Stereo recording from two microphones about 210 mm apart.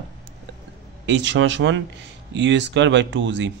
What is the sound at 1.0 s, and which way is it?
A man's voice, 60° right (ahead or behind).